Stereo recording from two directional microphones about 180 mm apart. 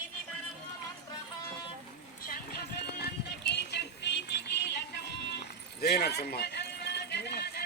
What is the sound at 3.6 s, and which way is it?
Music, 70° left (ahead or behind).